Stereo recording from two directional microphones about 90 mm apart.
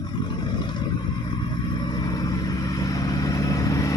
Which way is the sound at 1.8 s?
50° left (ahead or behind).